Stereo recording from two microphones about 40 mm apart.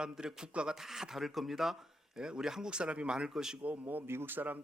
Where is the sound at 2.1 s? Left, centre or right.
Centre.